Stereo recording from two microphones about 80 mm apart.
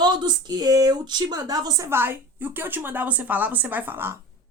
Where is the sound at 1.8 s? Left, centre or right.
Right.